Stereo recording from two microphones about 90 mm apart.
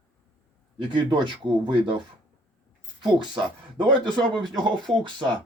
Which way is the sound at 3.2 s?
60° right (ahead or behind).